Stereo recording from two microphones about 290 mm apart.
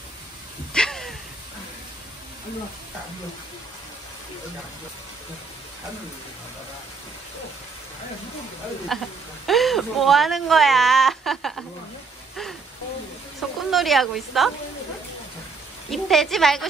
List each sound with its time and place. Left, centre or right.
0.7 s a sound: centre
8.9 s speech: centre
13.7 s speech: centre
15.9 s speech: centre